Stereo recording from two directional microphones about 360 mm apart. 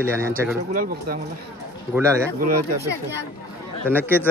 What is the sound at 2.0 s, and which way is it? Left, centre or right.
Speech, centre.